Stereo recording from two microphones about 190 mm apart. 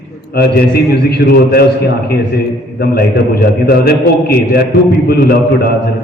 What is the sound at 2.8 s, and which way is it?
A man's voice, 55° left (ahead or behind).